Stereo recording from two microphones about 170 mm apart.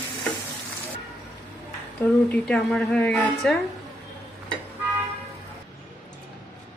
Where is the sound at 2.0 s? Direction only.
5° left (ahead or behind).